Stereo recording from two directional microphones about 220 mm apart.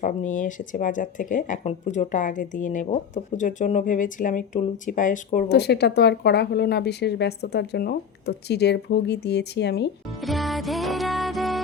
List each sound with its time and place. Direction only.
0.0 s speech: 35° left (ahead or behind); by 9.9 s 50° left (ahead or behind)
10.2 s music: centre (ahead or behind)